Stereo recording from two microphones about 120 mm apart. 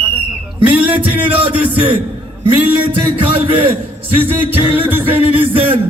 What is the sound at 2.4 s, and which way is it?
Speech, 45° right (ahead or behind).